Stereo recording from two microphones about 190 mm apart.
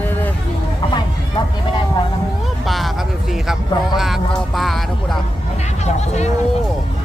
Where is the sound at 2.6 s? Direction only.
Centre (ahead or behind).